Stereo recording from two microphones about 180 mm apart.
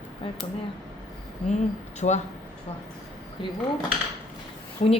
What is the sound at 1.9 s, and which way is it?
Speech, 40° left (ahead or behind).